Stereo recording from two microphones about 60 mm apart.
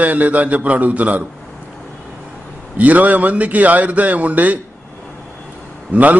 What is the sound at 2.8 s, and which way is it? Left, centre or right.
A man's voice, right.